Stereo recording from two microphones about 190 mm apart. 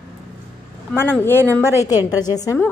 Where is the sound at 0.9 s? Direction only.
10° left (ahead or behind).